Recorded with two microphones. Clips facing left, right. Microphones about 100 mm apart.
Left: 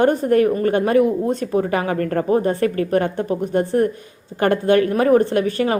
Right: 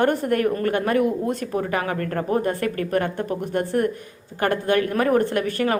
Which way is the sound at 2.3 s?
25° left (ahead or behind).